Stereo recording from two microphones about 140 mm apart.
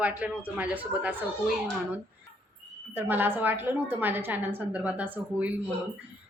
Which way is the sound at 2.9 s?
15° right (ahead or behind).